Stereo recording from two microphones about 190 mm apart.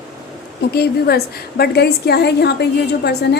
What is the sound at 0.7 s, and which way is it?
A woman's voice, 55° left (ahead or behind).